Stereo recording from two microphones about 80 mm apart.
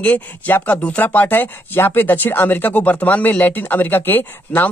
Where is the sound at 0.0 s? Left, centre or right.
Centre.